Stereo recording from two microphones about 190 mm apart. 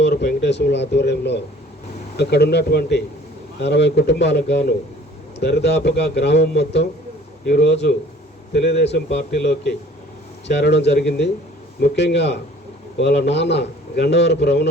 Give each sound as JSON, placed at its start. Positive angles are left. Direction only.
{"t": 0.0, "sound": "a man's voice", "side_deg": 60}